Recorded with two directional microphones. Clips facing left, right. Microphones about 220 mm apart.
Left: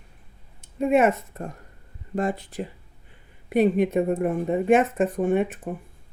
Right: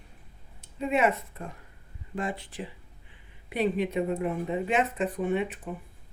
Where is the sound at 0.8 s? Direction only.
50° left (ahead or behind).